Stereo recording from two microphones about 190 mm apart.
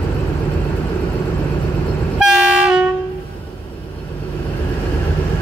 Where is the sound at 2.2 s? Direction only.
5° right (ahead or behind).